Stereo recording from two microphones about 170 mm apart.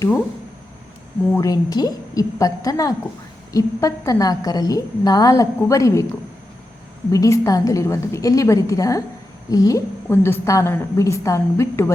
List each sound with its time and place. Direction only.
1.4 s a woman's voice: 20° left (ahead or behind)
7.1 s a woman's voice: 20° left (ahead or behind)